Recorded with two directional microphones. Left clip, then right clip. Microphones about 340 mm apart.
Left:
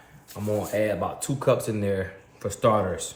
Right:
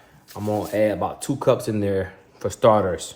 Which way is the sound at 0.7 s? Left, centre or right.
Right.